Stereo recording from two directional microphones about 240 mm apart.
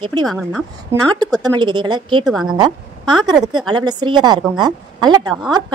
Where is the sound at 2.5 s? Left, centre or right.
Centre.